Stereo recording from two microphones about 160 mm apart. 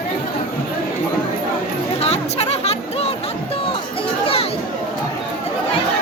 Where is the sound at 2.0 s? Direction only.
40° left (ahead or behind).